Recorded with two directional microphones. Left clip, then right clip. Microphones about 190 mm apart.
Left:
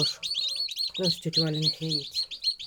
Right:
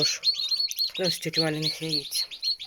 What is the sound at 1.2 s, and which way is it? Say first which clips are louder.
Speech: even; centre (ahead or behind).